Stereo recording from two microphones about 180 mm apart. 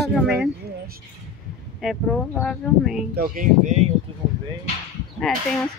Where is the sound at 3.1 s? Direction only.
55° right (ahead or behind).